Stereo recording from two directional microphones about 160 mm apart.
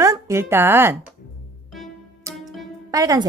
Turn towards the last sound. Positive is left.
turn(degrees=-25)  # may be behind; listen again after turning